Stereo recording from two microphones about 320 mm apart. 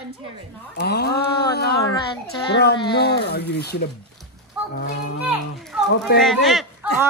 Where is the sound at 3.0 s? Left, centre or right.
Left.